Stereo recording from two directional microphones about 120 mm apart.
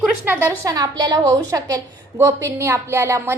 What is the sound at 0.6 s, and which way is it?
A woman's voice, 30° right (ahead or behind).